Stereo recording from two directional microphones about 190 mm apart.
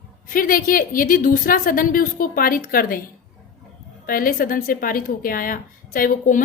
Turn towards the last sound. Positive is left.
turn(degrees=45)  # may be behind; listen again after turning